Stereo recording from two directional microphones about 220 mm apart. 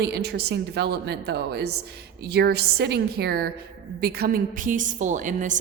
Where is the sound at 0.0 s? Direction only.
50° right (ahead or behind).